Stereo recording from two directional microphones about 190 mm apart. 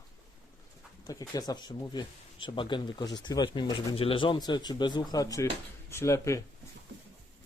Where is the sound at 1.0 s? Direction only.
20° left (ahead or behind).